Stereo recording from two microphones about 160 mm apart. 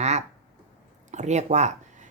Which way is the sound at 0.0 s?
45° right (ahead or behind).